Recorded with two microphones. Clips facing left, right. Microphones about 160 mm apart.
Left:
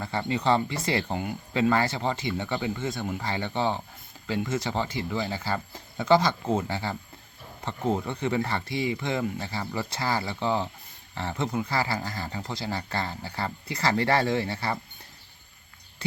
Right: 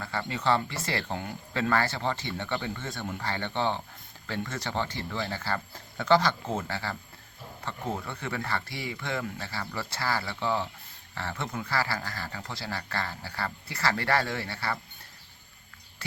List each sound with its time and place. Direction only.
0.0 s speech: 25° left (ahead or behind)